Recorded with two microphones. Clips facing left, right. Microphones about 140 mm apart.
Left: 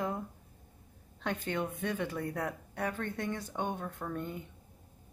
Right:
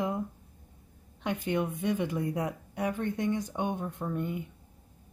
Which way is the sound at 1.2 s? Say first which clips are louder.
Right 4 dB; 15° right (ahead or behind).